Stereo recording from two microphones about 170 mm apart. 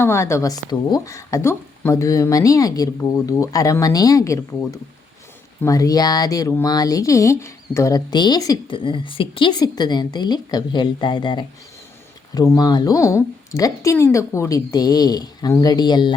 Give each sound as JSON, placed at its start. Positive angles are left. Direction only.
{"t": 0.0, "sound": "speech", "side_deg": 15}